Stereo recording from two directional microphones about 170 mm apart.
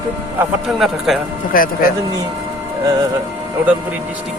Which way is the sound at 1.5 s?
55° left (ahead or behind).